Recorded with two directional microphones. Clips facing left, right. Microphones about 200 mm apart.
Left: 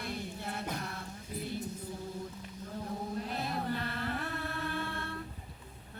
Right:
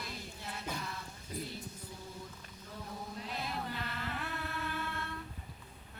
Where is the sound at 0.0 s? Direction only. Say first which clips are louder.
Left 6 dB; 60° left (ahead or behind).